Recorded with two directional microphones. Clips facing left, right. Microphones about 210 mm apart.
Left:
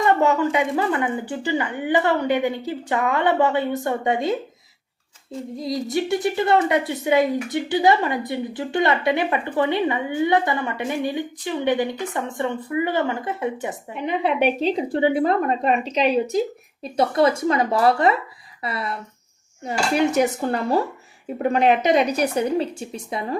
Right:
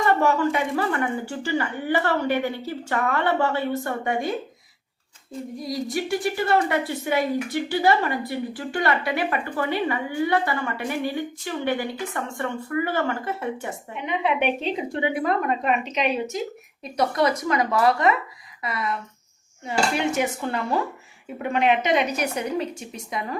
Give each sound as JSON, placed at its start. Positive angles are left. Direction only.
{"t": 0.0, "sound": "speech", "side_deg": 20}
{"t": 5.5, "sound": "a woman's voice", "side_deg": 25}
{"t": 13.9, "sound": "a woman's voice", "side_deg": 35}